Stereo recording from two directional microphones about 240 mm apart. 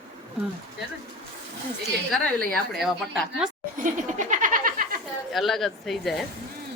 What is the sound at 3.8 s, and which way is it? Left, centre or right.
Laughter, right.